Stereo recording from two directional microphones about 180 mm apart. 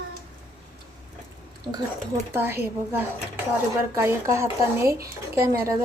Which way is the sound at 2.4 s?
10° right (ahead or behind).